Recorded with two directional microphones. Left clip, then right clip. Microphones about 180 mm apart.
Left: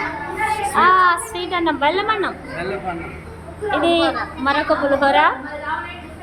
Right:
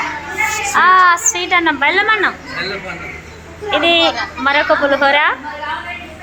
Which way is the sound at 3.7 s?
Centre (ahead or behind).